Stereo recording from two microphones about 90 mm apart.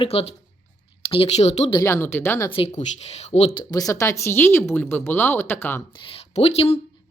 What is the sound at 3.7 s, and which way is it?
Speech, 40° left (ahead or behind).